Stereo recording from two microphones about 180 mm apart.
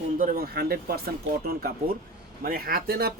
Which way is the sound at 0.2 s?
55° right (ahead or behind).